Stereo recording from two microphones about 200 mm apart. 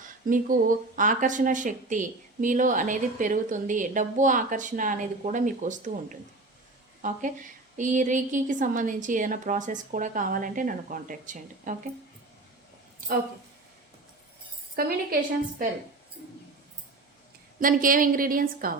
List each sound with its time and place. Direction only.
0.3 s speech: 40° right (ahead or behind)
14.8 s a woman's voice: 50° right (ahead or behind)
17.6 s a woman's voice: 45° right (ahead or behind)